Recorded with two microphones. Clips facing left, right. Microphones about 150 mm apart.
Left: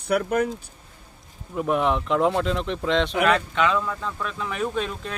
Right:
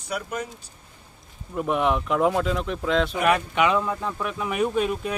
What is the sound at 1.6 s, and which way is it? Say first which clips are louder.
Speech: left 1 dB; centre (ahead or behind).